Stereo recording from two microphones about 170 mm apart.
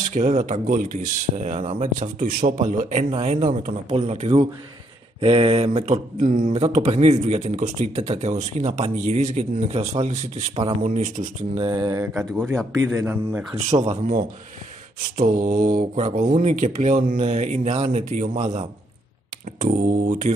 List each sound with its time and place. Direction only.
0.1 s speech: 45° right (ahead or behind)
6.6 s speech: 35° right (ahead or behind)
11.6 s mantra: 25° right (ahead or behind)
12.1 s speech: centre (ahead or behind)
12.7 s a man's voice: 20° right (ahead or behind)
13.8 s speech: 50° right (ahead or behind)